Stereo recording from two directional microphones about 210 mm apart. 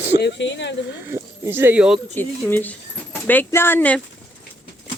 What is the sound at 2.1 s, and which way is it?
Speech, 10° left (ahead or behind).